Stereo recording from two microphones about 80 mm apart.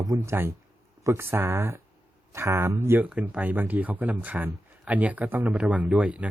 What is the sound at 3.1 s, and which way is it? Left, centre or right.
Speech, centre.